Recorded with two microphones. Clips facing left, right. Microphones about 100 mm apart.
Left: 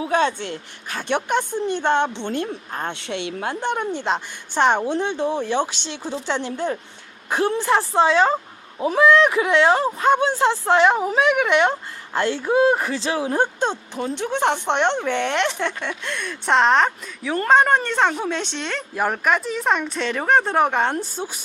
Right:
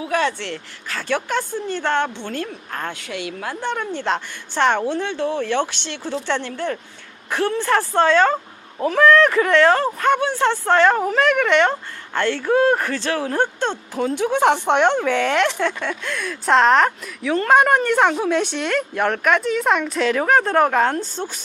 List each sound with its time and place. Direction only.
0.0 s a woman's voice: 25° left (ahead or behind)
7.7 s a woman's voice: 5° left (ahead or behind)
10.0 s a woman's voice: 20° left (ahead or behind)
10.7 s speech: 5° left (ahead or behind)
13.9 s a woman's voice: 5° right (ahead or behind); by 21.4 s 10° left (ahead or behind)